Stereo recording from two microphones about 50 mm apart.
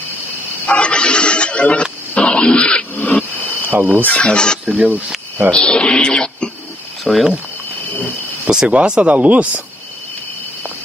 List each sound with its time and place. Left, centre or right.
0.7 s neigh: left
3.6 s speech: right
4.1 s speech: centre
4.6 s speech: centre
5.5 s speech: centre
8.5 s speech: right